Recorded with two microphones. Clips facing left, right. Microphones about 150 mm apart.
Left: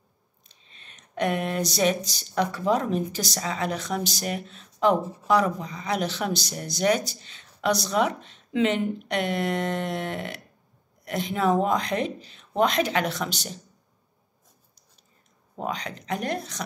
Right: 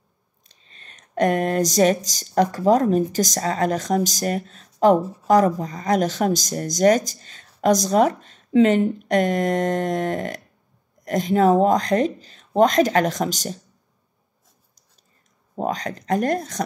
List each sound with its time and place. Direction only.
0.5 s speech: 45° right (ahead or behind)
15.5 s speech: 40° right (ahead or behind)